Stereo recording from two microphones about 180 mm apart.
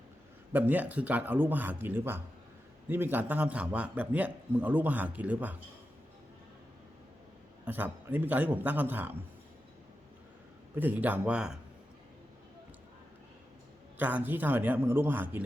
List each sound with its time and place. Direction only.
0.5 s a man's voice: 10° right (ahead or behind)
7.6 s a man's voice: 10° right (ahead or behind)
10.8 s a man's voice: 10° right (ahead or behind)
14.0 s a man's voice: 10° right (ahead or behind)